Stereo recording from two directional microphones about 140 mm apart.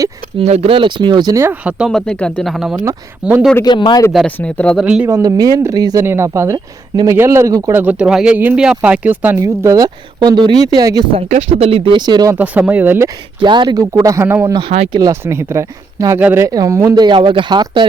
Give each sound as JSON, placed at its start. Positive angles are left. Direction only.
{"t": 0.3, "sound": "speech", "side_deg": -50}
{"t": 1.9, "sound": "speech", "side_deg": 5}
{"t": 3.6, "sound": "speech", "side_deg": 30}
{"t": 4.3, "sound": "speech", "side_deg": 10}
{"t": 4.8, "sound": "speech", "side_deg": -5}
{"t": 5.0, "sound": "speech", "side_deg": -25}
{"t": 11.3, "sound": "speech", "side_deg": -50}
{"t": 12.4, "sound": "speech", "side_deg": -10}
{"t": 13.4, "sound": "speech", "side_deg": -35}
{"t": 13.9, "sound": "speech", "side_deg": -20}